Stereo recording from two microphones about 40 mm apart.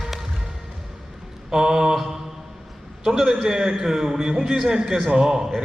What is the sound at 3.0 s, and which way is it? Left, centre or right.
A man's voice, centre.